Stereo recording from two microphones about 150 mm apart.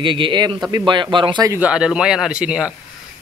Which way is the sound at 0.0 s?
35° right (ahead or behind).